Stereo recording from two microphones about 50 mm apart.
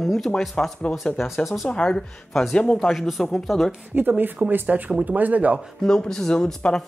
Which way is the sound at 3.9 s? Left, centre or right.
Right.